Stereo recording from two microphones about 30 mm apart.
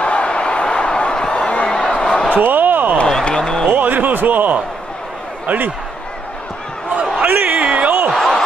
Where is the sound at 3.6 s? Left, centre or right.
Right.